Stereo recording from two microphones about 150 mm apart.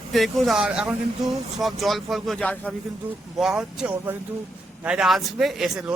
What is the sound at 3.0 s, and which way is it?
A man's voice, 5° right (ahead or behind).